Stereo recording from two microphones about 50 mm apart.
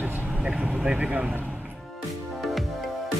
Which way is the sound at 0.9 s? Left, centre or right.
Right.